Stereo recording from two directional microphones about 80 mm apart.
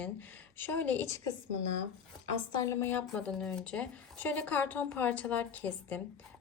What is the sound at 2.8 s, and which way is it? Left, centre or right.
Speech, left.